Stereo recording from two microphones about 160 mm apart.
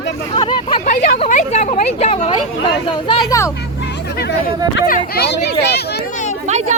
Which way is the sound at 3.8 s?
85° left.